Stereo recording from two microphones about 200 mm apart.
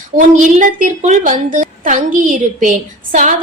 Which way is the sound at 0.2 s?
40° right (ahead or behind).